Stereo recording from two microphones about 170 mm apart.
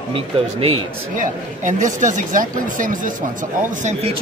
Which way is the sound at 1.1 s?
50° right (ahead or behind).